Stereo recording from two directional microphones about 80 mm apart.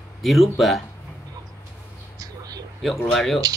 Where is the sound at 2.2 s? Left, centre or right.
Right.